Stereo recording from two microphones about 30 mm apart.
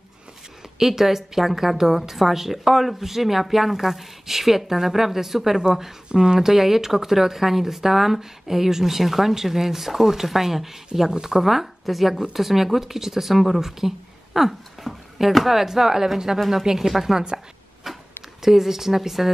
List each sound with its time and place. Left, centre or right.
0.7 s a woman's voice: centre
6.1 s a woman's voice: right
11.4 s a woman's voice: centre
17.9 s a sound: centre
18.4 s a woman's voice: centre